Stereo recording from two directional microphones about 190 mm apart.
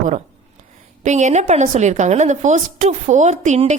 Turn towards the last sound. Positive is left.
turn(degrees=-35)  # may be behind; listen again after turning